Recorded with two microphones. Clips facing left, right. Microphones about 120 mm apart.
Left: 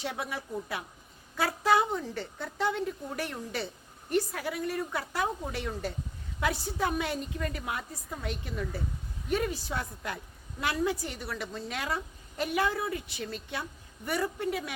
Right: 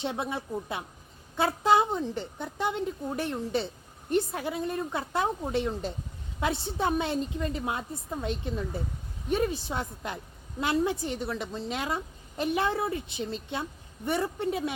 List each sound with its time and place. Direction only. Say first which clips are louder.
0.0 s a woman's voice: right 4 dB; 25° right (ahead or behind)